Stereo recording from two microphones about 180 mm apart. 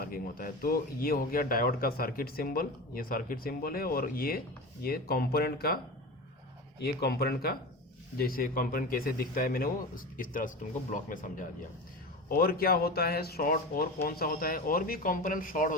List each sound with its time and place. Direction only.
0.0 s a man's voice: 50° left (ahead or behind)